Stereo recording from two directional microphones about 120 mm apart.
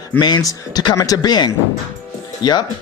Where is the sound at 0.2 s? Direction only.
35° left (ahead or behind).